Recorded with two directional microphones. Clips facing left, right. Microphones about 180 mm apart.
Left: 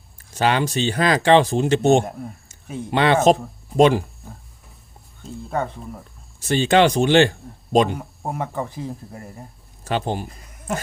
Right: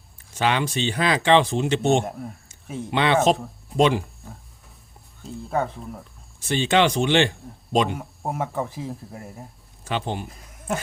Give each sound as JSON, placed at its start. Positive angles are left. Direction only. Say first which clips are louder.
{"t": 0.3, "sound": "speech", "louder": "left 3 dB", "side_deg": 40}
{"t": 2.0, "sound": "speech", "louder": "left 1 dB", "side_deg": 0}
{"t": 2.9, "sound": "speech", "louder": "left 3 dB", "side_deg": 45}
{"t": 5.2, "sound": "speech", "louder": "even", "side_deg": 0}
{"t": 6.5, "sound": "speech", "louder": "left 4 dB", "side_deg": 40}
{"t": 7.9, "sound": "speech", "louder": "even", "side_deg": 0}
{"t": 9.8, "sound": "speech", "louder": "left 4 dB", "side_deg": 40}
{"t": 10.2, "sound": "speech", "louder": "even", "side_deg": 0}